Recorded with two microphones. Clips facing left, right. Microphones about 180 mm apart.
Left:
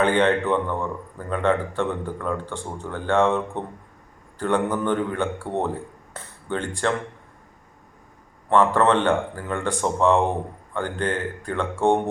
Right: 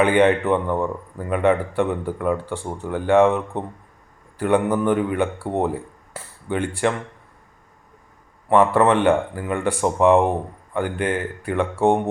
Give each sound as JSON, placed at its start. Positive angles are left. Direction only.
{"t": 0.0, "sound": "a man's voice", "side_deg": -10}
{"t": 8.4, "sound": "a man's voice", "side_deg": -10}